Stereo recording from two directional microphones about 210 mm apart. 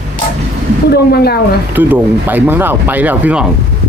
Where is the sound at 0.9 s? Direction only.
50° left (ahead or behind).